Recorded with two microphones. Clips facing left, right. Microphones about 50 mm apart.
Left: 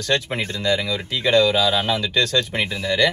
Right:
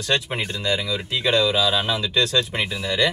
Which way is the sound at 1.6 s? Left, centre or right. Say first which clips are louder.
Left 2 dB; left.